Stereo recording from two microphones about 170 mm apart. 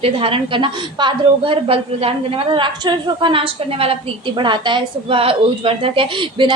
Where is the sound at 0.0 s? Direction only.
35° right (ahead or behind).